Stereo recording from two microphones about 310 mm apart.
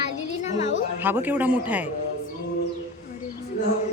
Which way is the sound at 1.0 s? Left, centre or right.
Centre.